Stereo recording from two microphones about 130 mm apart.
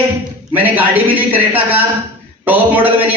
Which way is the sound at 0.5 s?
15° right (ahead or behind).